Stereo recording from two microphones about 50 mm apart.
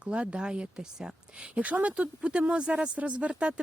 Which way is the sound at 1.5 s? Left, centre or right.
Right.